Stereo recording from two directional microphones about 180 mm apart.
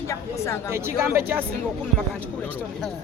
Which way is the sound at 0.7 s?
15° right (ahead or behind).